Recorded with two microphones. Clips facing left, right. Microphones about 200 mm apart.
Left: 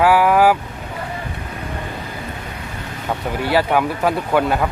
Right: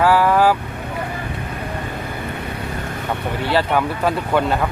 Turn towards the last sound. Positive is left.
turn(degrees=10)  # may be behind; listen again after turning